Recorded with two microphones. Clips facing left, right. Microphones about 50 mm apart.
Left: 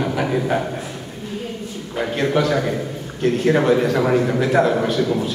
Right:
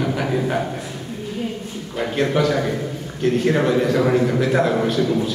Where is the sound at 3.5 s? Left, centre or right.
Centre.